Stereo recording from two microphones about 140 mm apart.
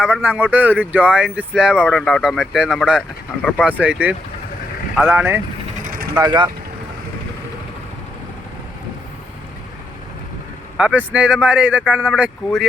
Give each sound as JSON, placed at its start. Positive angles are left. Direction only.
{"t": 0.0, "sound": "speech", "side_deg": -10}
{"t": 1.8, "sound": "speech", "side_deg": 5}
{"t": 6.1, "sound": "speech", "side_deg": -30}
{"t": 10.8, "sound": "speech", "side_deg": -10}